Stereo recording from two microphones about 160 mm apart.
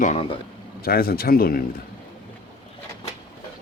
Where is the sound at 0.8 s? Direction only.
70° left (ahead or behind).